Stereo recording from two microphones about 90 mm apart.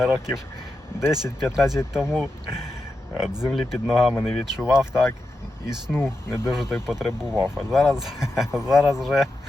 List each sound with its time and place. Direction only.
0.0 s speech: 5° right (ahead or behind)
5.9 s speech: 25° left (ahead or behind)
6.4 s speech: 5° right (ahead or behind)